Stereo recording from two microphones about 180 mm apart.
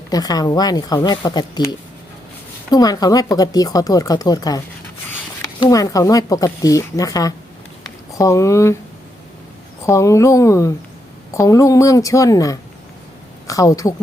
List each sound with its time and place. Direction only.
0.1 s speech: 20° left (ahead or behind)
9.8 s speech: 15° left (ahead or behind)